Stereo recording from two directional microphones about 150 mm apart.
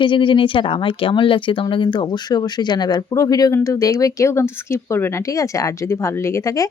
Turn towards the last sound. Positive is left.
turn(degrees=20)  # may be behind; listen again after turning